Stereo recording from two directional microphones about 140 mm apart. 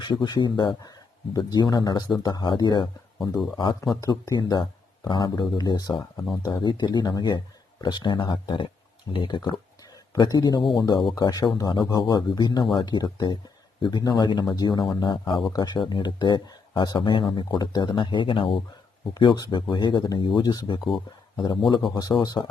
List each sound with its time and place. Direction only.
0.0 s a man's voice: 30° left (ahead or behind)